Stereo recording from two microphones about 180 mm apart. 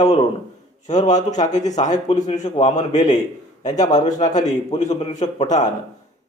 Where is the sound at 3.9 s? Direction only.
40° left (ahead or behind).